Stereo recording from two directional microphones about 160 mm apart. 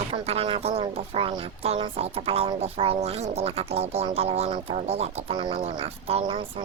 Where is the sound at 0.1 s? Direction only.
35° right (ahead or behind).